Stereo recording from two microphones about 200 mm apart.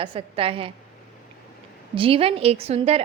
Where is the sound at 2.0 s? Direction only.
25° right (ahead or behind).